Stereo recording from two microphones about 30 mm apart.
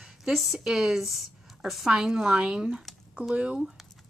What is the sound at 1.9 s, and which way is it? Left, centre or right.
Speech, right.